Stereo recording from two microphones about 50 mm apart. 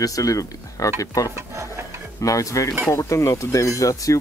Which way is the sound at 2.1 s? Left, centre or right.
Left.